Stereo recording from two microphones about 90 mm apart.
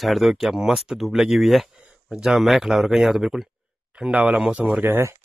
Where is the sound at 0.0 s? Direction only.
Centre (ahead or behind); by 5.1 s 25° right (ahead or behind).